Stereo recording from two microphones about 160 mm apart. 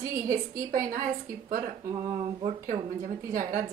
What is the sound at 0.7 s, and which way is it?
A woman's voice, 55° right (ahead or behind).